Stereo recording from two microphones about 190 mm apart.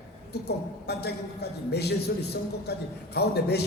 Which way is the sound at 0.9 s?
60° left (ahead or behind).